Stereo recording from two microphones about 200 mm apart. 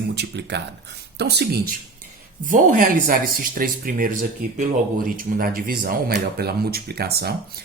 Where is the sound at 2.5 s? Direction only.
40° right (ahead or behind).